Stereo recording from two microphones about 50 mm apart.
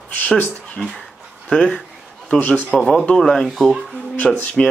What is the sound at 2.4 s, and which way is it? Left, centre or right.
Speech, left.